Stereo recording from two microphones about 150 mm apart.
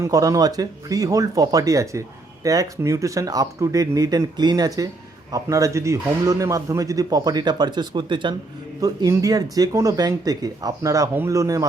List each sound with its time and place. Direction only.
0.0 s speech: 25° right (ahead or behind)